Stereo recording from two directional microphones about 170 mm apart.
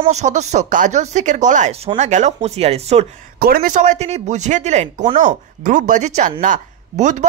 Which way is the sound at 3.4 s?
60° right (ahead or behind).